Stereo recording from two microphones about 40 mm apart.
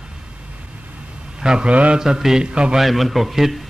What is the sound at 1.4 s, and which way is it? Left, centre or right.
A man's voice, right.